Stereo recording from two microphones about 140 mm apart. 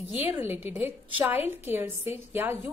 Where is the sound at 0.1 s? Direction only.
15° right (ahead or behind).